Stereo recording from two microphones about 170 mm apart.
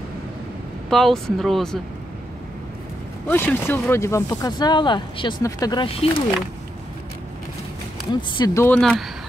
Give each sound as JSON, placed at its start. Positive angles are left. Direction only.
{"t": 0.8, "sound": "speech", "side_deg": 0}
{"t": 3.3, "sound": "speech", "side_deg": 10}
{"t": 8.1, "sound": "speech", "side_deg": 25}
{"t": 8.6, "sound": "speech", "side_deg": 5}